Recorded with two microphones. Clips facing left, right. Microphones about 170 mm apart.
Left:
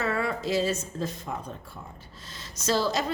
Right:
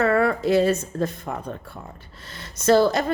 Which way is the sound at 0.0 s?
55° right (ahead or behind).